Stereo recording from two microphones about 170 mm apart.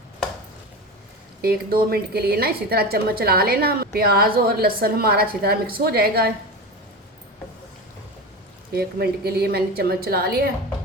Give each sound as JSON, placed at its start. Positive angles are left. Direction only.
{"t": 1.4, "sound": "a woman's voice", "side_deg": -65}
{"t": 8.7, "sound": "a woman's voice", "side_deg": -65}